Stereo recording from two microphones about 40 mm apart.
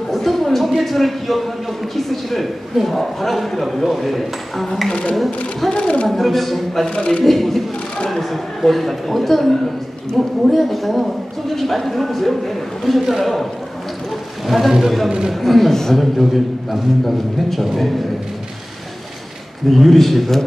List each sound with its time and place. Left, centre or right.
0.1 s a sound: centre
2.0 s a man's voice: centre
5.7 s speech: left
6.0 s a man's voice: centre
14.5 s a man's voice: centre
19.7 s a man's voice: centre